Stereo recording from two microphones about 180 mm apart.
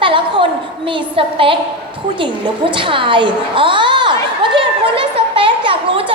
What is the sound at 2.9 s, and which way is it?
Speech, 30° right (ahead or behind).